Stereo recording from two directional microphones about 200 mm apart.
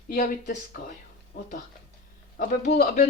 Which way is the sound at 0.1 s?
45° left (ahead or behind).